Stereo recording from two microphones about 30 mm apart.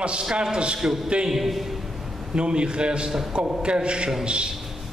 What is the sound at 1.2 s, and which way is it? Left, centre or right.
Speech, centre.